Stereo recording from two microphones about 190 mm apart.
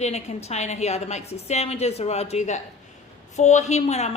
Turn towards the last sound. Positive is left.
turn(degrees=35)  # may be behind; listen again after turning